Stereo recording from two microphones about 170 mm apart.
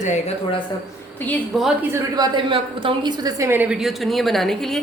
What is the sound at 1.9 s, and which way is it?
A woman's voice, 25° right (ahead or behind).